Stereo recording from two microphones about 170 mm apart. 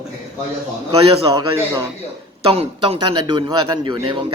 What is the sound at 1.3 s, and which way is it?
Speech, 15° right (ahead or behind).